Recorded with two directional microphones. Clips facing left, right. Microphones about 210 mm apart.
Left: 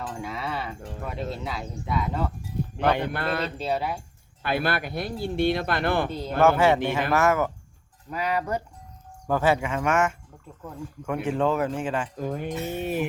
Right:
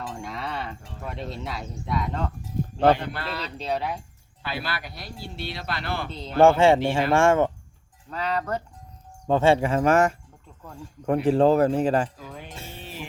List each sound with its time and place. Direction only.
0.1 s speech: 5° left (ahead or behind)
2.7 s a man's voice: 55° left (ahead or behind)
3.6 s speech: centre (ahead or behind)
4.4 s speech: 55° left (ahead or behind)
6.1 s speech: 10° left (ahead or behind)
6.4 s speech: 25° right (ahead or behind)
8.1 s speech: 10° left (ahead or behind)
9.2 s a man's voice: 25° right (ahead or behind)
12.1 s speech: 50° left (ahead or behind)